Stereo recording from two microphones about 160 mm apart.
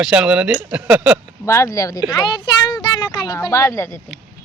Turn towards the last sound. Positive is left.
turn(degrees=15)  # may be behind; listen again after turning